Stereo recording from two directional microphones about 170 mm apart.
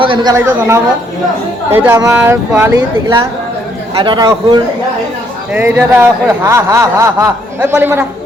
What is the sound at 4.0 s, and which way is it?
Speech, 25° right (ahead or behind).